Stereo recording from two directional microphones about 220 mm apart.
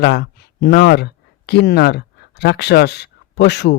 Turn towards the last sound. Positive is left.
turn(degrees=50)  # may be behind; listen again after turning